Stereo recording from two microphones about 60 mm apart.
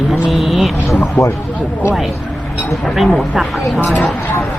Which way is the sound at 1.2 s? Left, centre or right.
Left.